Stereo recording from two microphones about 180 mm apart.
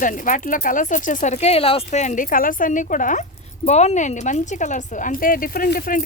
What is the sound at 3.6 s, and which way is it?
Speech, 35° left (ahead or behind).